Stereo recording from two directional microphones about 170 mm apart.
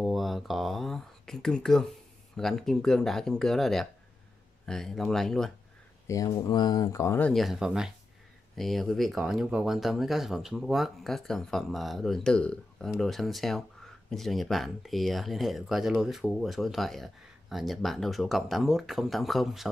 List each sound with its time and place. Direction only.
0.0 s speech: centre (ahead or behind)
6.0 s speech: 20° left (ahead or behind); by 19.7 s centre (ahead or behind)